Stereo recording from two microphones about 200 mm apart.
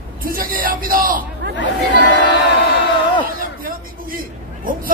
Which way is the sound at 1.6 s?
65° left (ahead or behind).